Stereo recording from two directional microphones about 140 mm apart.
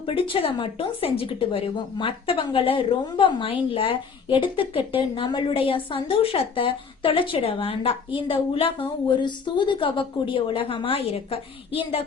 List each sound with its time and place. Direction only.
0.0 s a woman's voice: 40° left (ahead or behind)